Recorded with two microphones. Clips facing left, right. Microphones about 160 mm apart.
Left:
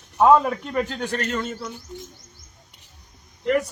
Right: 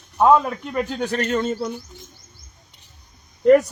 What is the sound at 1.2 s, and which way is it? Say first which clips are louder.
Speech: right 6 dB; 30° right (ahead or behind).